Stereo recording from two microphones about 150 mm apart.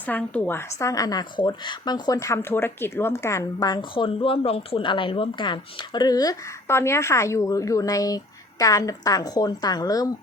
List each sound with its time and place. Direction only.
0.0 s a woman's voice: 10° left (ahead or behind); by 10.1 s 25° left (ahead or behind)